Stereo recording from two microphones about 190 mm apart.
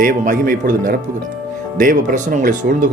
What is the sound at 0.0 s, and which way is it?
Speech, 45° right (ahead or behind).